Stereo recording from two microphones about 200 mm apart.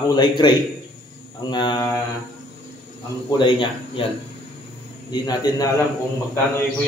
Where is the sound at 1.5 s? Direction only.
20° left (ahead or behind).